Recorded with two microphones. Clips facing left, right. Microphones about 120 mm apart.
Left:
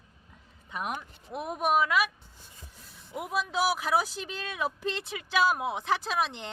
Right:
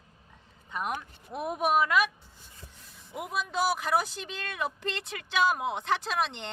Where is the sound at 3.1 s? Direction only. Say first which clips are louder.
Left 1 dB; centre (ahead or behind).